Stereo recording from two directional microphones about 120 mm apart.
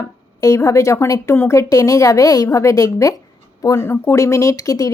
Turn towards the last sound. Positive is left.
turn(degrees=30)  # may be behind; listen again after turning